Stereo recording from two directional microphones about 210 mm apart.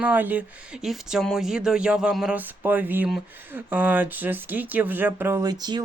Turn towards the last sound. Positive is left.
turn(degrees=-20)  # may be behind; listen again after turning